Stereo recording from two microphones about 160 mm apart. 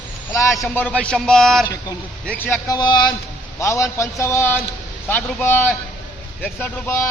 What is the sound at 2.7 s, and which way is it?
A man's voice, 25° left (ahead or behind).